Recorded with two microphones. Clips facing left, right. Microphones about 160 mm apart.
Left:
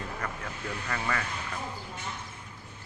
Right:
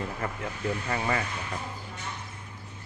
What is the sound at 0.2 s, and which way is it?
Speech, 25° right (ahead or behind).